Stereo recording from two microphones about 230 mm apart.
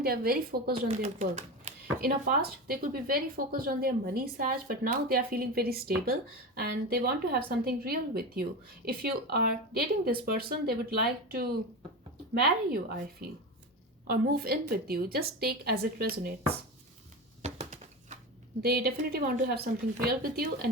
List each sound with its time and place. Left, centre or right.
0.0 s speech: right
0.9 s speech: right
14.1 s speech: right
17.4 s a sound: right
18.6 s speech: right